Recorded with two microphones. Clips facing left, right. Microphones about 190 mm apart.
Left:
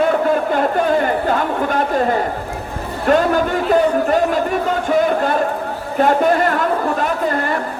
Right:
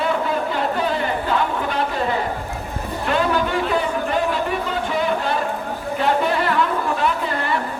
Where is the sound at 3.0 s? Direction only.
45° left (ahead or behind).